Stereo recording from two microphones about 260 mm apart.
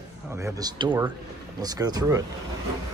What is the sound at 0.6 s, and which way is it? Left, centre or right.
Speech, centre.